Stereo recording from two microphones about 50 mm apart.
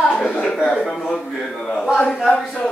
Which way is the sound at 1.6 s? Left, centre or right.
Centre.